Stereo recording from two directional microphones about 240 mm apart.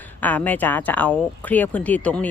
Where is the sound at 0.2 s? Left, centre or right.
Centre.